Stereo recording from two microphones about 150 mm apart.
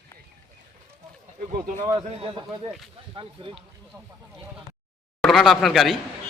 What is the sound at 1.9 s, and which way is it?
A man's voice, 30° right (ahead or behind).